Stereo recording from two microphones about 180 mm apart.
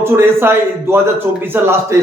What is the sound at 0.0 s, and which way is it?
A man's voice, 15° right (ahead or behind).